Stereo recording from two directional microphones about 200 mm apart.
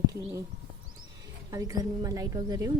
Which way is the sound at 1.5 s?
20° right (ahead or behind).